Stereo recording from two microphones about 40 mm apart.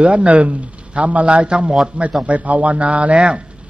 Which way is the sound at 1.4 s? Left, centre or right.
Right.